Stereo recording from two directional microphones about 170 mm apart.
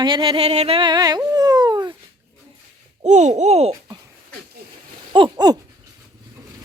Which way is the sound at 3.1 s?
45° right (ahead or behind).